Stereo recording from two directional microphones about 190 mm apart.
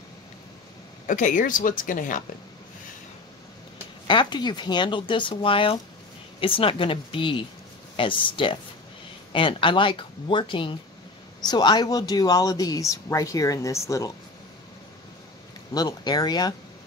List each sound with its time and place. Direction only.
1.0 s speech: 45° left (ahead or behind)
3.7 s speech: 25° left (ahead or behind)
15.7 s speech: 20° left (ahead or behind)